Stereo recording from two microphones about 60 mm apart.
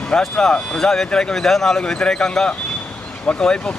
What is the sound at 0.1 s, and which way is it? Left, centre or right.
Speech, centre.